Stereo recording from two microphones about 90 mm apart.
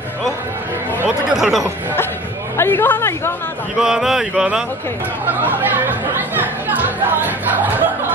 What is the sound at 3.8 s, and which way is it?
Speech, 5° right (ahead or behind).